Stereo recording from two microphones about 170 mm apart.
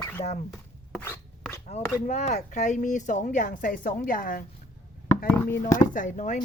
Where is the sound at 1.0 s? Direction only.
15° left (ahead or behind).